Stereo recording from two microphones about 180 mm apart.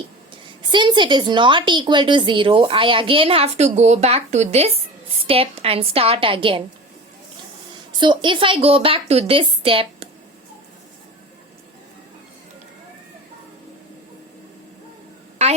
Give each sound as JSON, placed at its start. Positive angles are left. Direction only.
{"t": 0.7, "sound": "a woman's voice", "side_deg": -25}
{"t": 7.9, "sound": "a woman's voice", "side_deg": -25}